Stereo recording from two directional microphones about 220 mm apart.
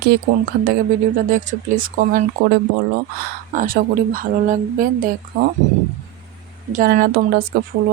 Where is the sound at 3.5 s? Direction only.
40° right (ahead or behind).